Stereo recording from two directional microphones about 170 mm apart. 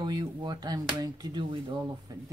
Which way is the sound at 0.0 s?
25° right (ahead or behind).